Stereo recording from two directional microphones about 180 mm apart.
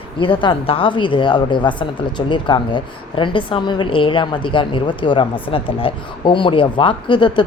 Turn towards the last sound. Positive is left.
turn(degrees=25)  # may be behind; listen again after turning